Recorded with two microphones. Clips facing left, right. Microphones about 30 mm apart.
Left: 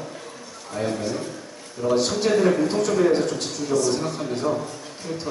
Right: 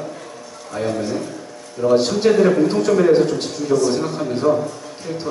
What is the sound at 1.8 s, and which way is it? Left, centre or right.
A man's voice, right.